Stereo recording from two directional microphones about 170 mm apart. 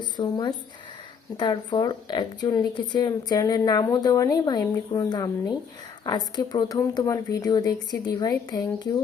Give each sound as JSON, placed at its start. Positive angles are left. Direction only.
{"t": 0.0, "sound": "speech", "side_deg": 25}